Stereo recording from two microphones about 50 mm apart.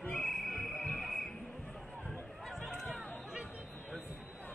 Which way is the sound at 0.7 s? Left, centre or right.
Centre.